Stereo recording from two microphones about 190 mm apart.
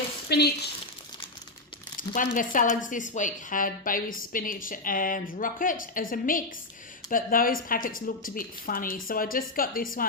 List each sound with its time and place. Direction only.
0.3 s speech: 60° left (ahead or behind)
2.0 s speech: 45° left (ahead or behind)